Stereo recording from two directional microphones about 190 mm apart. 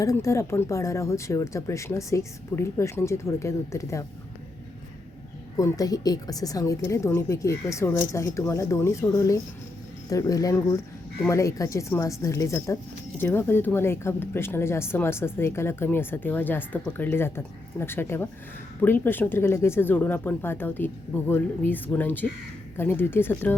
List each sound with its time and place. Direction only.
0.0 s speech: 15° left (ahead or behind)
5.5 s speech: 20° left (ahead or behind)